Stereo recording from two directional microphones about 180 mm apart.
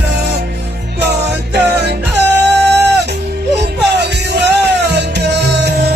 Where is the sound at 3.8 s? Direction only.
70° right (ahead or behind).